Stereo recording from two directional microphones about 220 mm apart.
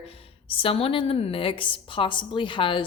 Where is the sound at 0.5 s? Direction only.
25° left (ahead or behind).